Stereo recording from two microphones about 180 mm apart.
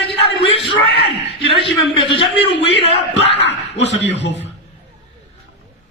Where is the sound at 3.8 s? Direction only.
80° left.